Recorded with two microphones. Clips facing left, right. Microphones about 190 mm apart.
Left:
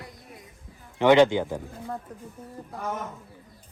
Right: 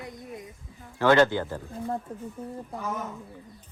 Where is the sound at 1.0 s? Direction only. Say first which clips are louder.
Left 3 dB; 15° left (ahead or behind).